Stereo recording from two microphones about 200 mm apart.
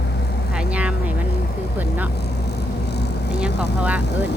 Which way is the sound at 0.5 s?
5° right (ahead or behind).